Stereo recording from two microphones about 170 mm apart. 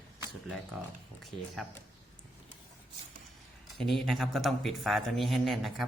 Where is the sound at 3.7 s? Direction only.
Centre (ahead or behind).